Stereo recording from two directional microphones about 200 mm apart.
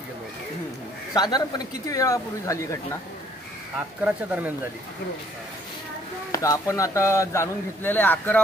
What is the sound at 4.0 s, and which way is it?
Speech, 10° right (ahead or behind).